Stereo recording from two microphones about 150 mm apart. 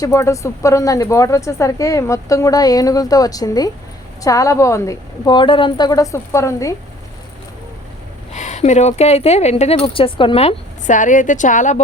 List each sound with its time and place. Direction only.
0.0 s speech: 20° left (ahead or behind)
8.3 s speech: 50° left (ahead or behind)
10.8 s a woman's voice: 60° left (ahead or behind)